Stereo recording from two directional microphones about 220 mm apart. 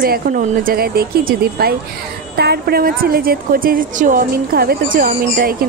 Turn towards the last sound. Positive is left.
turn(degrees=-40)  # may be behind; listen again after turning